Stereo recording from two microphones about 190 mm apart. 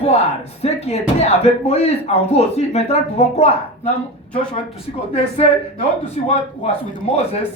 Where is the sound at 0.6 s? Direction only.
35° left (ahead or behind).